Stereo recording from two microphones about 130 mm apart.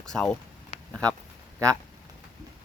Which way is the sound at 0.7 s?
55° left (ahead or behind).